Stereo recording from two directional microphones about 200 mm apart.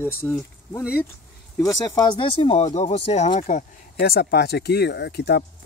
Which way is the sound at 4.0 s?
50° left (ahead or behind).